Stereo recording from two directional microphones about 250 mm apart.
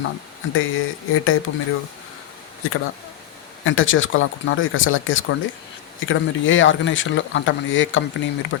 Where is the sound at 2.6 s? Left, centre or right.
Left.